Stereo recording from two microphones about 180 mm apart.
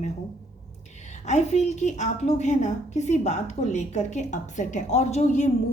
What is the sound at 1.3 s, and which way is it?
A woman's voice, 40° left (ahead or behind).